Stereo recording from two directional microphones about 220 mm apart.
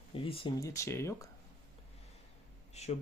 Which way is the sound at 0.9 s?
10° left (ahead or behind).